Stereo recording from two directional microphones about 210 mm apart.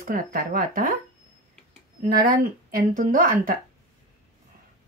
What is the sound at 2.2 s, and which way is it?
Speech, 40° right (ahead or behind).